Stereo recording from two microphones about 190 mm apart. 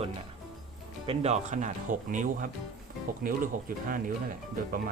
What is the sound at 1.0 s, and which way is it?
Speech, 35° right (ahead or behind).